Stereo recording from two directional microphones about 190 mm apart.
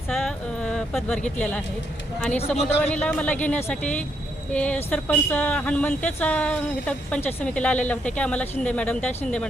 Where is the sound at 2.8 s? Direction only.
5° left (ahead or behind).